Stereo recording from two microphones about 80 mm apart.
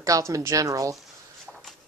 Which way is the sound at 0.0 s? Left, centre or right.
Right.